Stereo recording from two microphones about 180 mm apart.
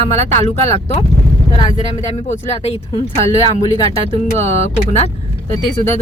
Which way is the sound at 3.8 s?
30° right (ahead or behind).